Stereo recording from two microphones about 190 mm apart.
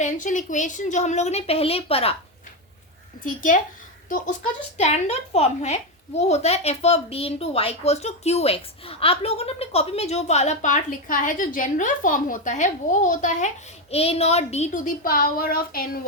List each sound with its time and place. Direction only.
0.0 s a woman's voice: 40° left (ahead or behind)
3.2 s a woman's voice: 45° left (ahead or behind)